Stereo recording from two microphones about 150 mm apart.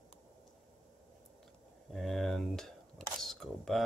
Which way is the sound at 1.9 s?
Centre (ahead or behind).